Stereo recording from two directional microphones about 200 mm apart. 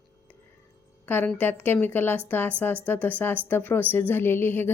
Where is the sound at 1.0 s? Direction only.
10° left (ahead or behind).